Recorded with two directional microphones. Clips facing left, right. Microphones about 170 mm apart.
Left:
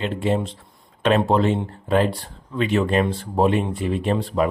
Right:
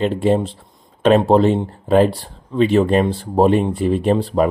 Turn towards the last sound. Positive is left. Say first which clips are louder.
# right 5 dB
turn(degrees=-35)  # may be behind; listen again after turning